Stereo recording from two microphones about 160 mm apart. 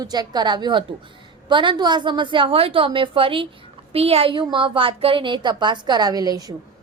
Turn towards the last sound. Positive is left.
turn(degrees=-25)  # may be behind; listen again after turning